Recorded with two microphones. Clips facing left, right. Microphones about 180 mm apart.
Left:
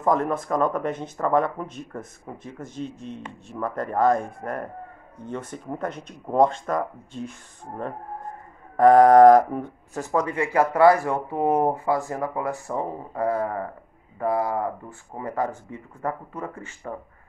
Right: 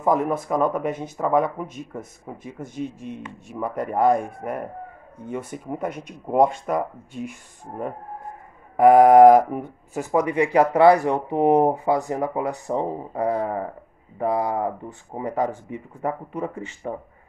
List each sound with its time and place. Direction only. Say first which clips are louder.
0.0 s speech: right 1 dB; 5° right (ahead or behind)
8.7 s speech: right 1 dB; 10° right (ahead or behind)